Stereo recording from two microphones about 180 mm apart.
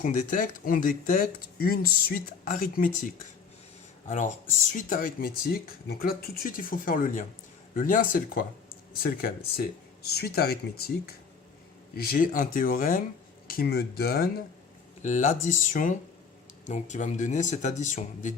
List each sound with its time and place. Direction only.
0.0 s speech: 45° left (ahead or behind)
4.7 s speech: 45° left (ahead or behind)
15.0 s speech: 45° left (ahead or behind)